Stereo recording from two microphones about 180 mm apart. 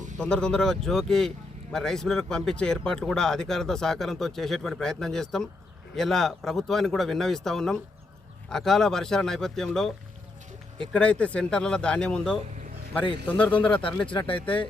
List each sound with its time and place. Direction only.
0.2 s speech: 5° left (ahead or behind)
13.9 s speech: 25° left (ahead or behind)